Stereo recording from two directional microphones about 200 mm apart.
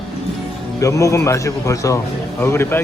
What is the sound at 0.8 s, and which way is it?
Speech, 15° left (ahead or behind).